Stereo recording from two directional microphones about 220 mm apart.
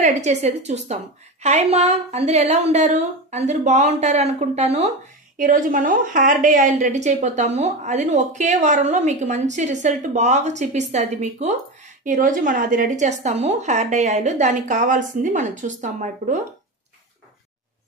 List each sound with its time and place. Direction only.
0.0 s a woman's voice: 30° right (ahead or behind)